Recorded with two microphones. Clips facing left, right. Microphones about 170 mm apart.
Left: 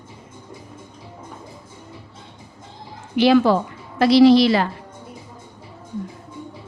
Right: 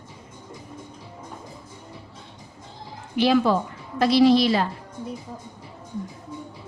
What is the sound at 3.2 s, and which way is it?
A woman's voice, 80° left.